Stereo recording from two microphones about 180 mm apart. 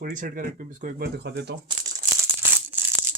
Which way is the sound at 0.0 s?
50° right (ahead or behind).